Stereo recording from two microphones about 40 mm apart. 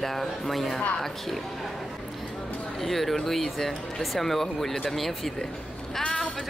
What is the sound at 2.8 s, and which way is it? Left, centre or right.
Speech, centre.